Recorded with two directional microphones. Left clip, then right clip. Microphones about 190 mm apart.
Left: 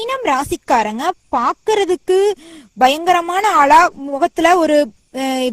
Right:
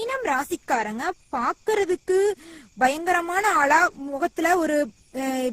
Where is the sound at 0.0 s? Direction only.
35° left (ahead or behind).